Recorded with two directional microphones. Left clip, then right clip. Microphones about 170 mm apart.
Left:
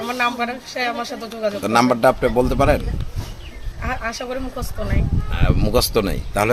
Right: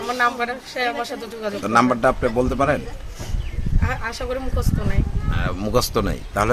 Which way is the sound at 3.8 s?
20° right (ahead or behind).